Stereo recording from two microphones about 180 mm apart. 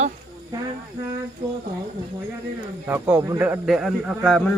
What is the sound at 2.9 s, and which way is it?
A man's voice, 10° right (ahead or behind).